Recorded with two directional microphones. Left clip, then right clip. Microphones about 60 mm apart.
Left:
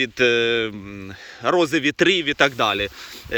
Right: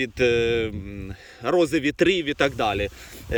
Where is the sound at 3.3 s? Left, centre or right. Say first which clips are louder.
Left 1 dB; right.